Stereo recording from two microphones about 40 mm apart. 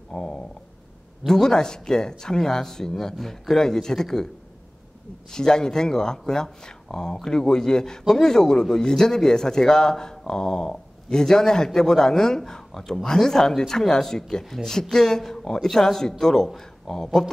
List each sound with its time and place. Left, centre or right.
0.1 s speech: centre
5.3 s speech: centre